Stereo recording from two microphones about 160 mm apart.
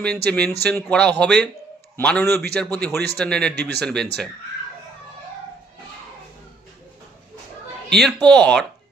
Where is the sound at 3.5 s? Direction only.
90° right.